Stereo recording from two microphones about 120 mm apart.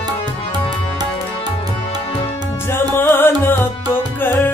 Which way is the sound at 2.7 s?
20° left (ahead or behind).